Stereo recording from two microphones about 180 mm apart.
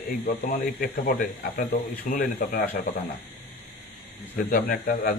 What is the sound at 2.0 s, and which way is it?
Speech, 40° left (ahead or behind).